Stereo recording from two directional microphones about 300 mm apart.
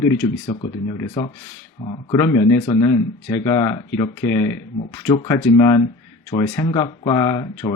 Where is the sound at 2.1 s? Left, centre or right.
Centre.